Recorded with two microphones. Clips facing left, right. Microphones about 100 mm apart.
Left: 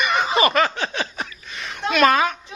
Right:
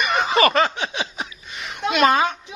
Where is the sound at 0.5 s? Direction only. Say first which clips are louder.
Even; 20° right (ahead or behind).